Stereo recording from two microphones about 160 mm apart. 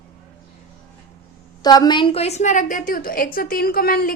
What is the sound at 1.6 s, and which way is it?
A woman's voice, 25° left (ahead or behind).